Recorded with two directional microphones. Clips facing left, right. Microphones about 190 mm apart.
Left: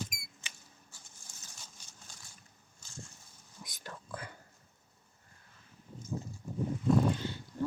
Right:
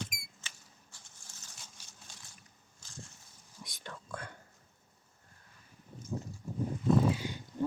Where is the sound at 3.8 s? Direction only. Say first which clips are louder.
Even; 5° left (ahead or behind).